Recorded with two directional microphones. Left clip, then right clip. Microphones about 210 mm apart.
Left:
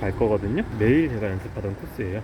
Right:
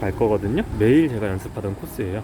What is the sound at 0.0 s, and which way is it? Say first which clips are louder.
Speech: right 2 dB; 10° right (ahead or behind).